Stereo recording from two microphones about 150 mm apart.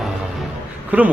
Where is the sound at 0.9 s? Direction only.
10° right (ahead or behind).